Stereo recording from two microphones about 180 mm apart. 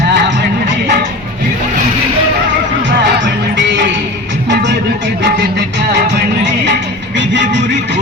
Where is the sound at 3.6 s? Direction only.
80° right.